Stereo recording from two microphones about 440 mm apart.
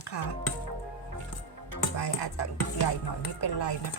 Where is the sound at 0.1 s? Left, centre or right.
Left.